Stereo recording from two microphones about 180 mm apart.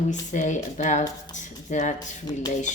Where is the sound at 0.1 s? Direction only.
40° left (ahead or behind).